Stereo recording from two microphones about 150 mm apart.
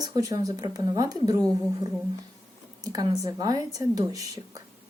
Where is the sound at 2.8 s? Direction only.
25° right (ahead or behind).